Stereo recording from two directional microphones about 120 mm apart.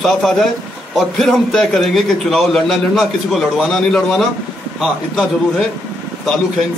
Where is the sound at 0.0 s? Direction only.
Centre (ahead or behind).